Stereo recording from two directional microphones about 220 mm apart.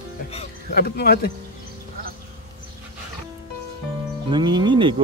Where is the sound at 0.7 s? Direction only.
45° left (ahead or behind).